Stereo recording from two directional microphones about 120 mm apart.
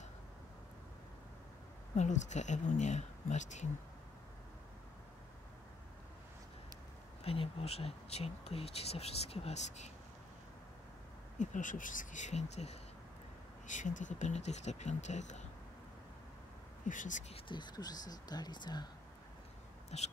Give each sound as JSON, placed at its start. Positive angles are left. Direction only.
{"t": 2.0, "sound": "speech", "side_deg": 80}
{"t": 7.2, "sound": "speech", "side_deg": 55}
{"t": 11.3, "sound": "speech", "side_deg": 90}
{"t": 13.7, "sound": "speech", "side_deg": 90}
{"t": 16.8, "sound": "speech", "side_deg": 90}
{"t": 17.3, "sound": "speech", "side_deg": 40}
{"t": 19.9, "sound": "speech", "side_deg": 60}